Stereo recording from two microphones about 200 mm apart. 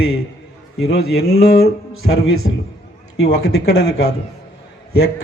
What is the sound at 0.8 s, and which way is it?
A man's voice, 55° left (ahead or behind).